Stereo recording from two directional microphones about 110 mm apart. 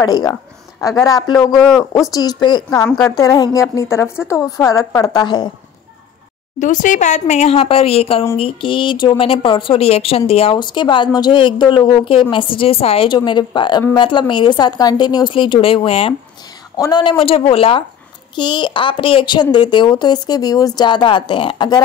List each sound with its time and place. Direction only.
0.0 s a woman's voice: 35° left (ahead or behind)
1.6 s speech: centre (ahead or behind)
2.1 s a woman's voice: 40° left (ahead or behind)
7.0 s a woman's voice: 90° left; by 10.6 s 60° left (ahead or behind)
10.6 s a woman's voice: 45° left (ahead or behind)
13.1 s a woman's voice: 45° left (ahead or behind); by 16.2 s 60° left (ahead or behind)
16.7 s speech: 35° left (ahead or behind)
17.0 s a woman's voice: 55° left (ahead or behind)
18.3 s a woman's voice: 45° left (ahead or behind)